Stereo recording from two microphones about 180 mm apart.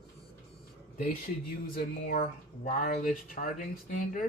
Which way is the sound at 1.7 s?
50° left (ahead or behind).